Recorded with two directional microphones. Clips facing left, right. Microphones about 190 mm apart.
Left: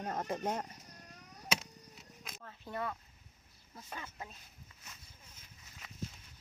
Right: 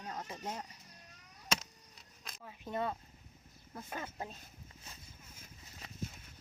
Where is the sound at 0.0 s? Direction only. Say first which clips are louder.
Left 6 dB; 55° left (ahead or behind).